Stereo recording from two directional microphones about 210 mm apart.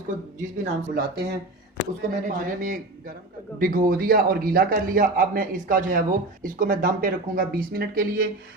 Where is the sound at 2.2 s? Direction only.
40° right (ahead or behind).